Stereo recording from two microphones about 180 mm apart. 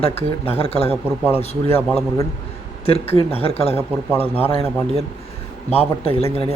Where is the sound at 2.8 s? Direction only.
35° left (ahead or behind).